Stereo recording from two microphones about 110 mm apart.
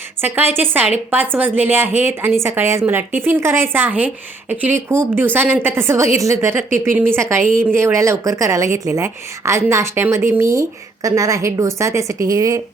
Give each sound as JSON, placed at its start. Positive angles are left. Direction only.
{"t": 0.3, "sound": "a woman's voice", "side_deg": -20}